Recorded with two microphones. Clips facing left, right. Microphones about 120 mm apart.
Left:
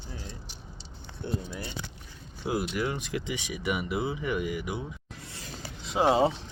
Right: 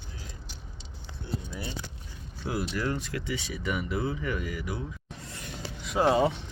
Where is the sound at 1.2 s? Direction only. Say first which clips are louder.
Left 3 dB; 60° left (ahead or behind).